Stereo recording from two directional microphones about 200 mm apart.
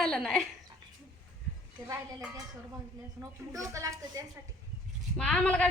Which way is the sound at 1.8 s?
15° right (ahead or behind).